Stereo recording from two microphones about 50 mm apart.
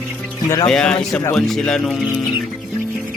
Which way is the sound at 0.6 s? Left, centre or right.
Centre.